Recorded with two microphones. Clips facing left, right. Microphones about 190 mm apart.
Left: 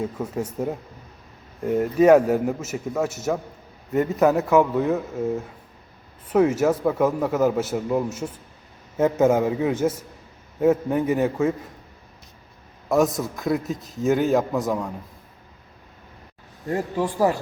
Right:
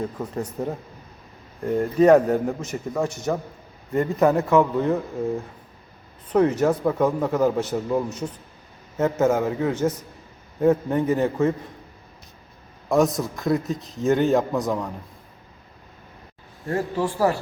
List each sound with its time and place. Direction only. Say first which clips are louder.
0.0 s a man's voice: left 1 dB; 10° left (ahead or behind)
6.3 s a man's voice: even; 5° left (ahead or behind)
12.9 s a man's voice: even; centre (ahead or behind)
16.6 s a man's voice: even; 15° left (ahead or behind)